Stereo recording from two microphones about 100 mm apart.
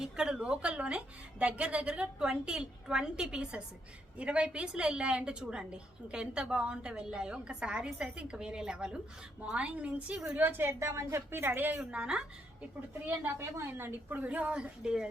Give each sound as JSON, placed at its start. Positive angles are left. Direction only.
{"t": 0.0, "sound": "a woman's voice", "side_deg": -5}
{"t": 13.1, "sound": "a woman's voice", "side_deg": -25}